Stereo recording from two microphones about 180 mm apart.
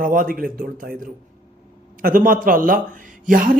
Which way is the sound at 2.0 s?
50° right (ahead or behind).